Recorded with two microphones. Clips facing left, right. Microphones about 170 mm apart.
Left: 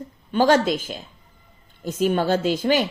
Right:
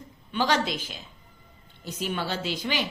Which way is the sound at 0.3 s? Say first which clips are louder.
Left 8 dB; 45° left (ahead or behind).